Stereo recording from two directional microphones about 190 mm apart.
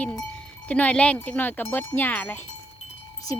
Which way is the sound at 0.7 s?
5° left (ahead or behind).